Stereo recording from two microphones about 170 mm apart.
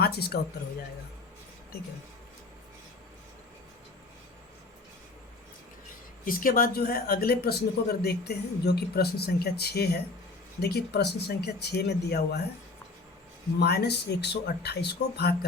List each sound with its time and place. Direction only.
0.0 s speech: 65° left (ahead or behind)
6.2 s speech: 55° left (ahead or behind)
13.6 s speech: 70° left (ahead or behind)